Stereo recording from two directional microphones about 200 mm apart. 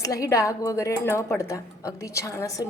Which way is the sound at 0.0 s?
15° left (ahead or behind).